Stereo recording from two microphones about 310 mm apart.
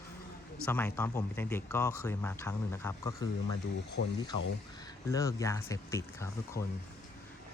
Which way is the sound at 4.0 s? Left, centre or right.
Left.